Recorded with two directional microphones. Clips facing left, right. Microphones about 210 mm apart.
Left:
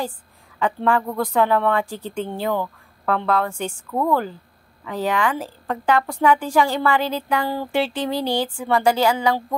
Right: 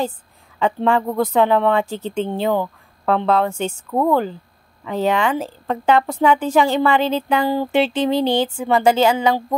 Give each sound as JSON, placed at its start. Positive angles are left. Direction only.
{"t": 0.6, "sound": "a woman's voice", "side_deg": -25}